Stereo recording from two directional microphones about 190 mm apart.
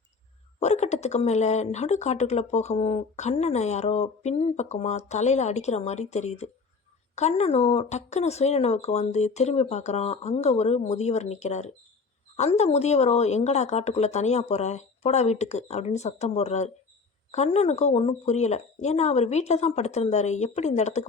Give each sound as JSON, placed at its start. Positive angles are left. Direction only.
{"t": 0.6, "sound": "speech", "side_deg": 35}